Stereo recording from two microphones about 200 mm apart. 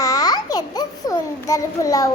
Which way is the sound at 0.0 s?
20° left (ahead or behind).